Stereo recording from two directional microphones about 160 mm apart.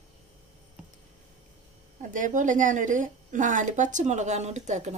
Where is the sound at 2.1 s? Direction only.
55° right (ahead or behind).